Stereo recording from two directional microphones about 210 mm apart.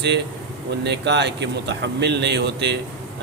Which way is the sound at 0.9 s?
55° right (ahead or behind).